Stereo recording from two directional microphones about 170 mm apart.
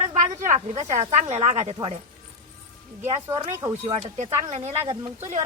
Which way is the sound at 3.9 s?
40° right (ahead or behind).